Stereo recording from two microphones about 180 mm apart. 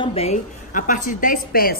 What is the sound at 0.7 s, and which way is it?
A woman's voice, 45° left (ahead or behind).